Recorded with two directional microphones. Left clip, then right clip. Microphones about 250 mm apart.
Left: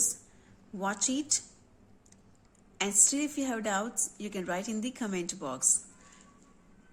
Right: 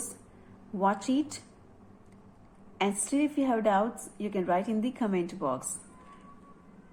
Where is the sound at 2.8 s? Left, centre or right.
Left.